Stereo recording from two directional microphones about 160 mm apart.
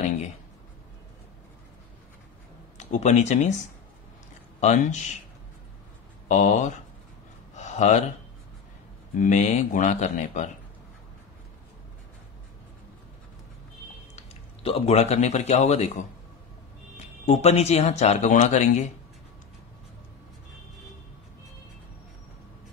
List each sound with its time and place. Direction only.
2.8 s speech: 50° left (ahead or behind)
4.6 s speech: 50° left (ahead or behind)
6.2 s speech: 45° left (ahead or behind)
7.5 s a sound: 50° left (ahead or behind)
9.1 s speech: 50° left (ahead or behind)
14.1 s speech: 40° left (ahead or behind)
17.3 s speech: 45° left (ahead or behind)